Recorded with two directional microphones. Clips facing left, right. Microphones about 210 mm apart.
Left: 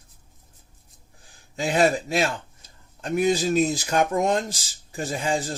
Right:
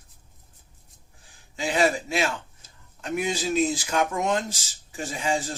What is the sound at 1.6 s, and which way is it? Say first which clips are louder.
Speech: left 3 dB; 40° left (ahead or behind).